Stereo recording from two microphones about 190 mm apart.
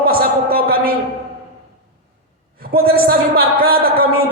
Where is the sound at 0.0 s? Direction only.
50° right (ahead or behind).